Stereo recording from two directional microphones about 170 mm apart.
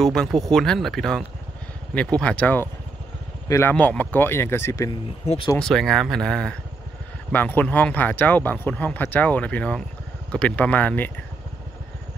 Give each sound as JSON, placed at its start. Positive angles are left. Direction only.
{"t": 0.0, "sound": "speech", "side_deg": 0}
{"t": 5.2, "sound": "speech", "side_deg": 40}
{"t": 5.6, "sound": "speech", "side_deg": 0}